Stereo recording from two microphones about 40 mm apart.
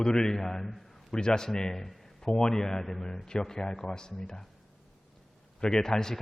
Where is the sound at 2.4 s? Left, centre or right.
Centre.